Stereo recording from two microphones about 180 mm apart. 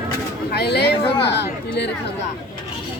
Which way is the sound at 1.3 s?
70° left (ahead or behind).